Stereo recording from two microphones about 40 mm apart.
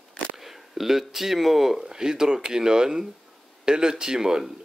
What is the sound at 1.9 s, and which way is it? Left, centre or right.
Speech, centre.